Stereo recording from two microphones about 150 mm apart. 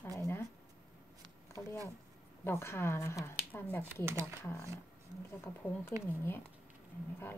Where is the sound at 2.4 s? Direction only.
15° left (ahead or behind).